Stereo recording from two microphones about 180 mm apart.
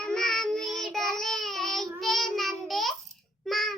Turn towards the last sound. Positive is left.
turn(degrees=0)  # may be behind; listen again after turning